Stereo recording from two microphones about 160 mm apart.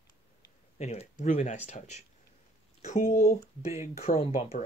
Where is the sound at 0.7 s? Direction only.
45° left (ahead or behind).